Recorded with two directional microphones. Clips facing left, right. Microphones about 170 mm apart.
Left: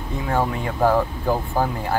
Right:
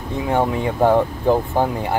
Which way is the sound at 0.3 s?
20° right (ahead or behind).